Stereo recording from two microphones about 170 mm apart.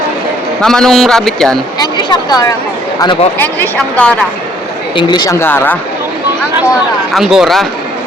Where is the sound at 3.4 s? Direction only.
10° left (ahead or behind).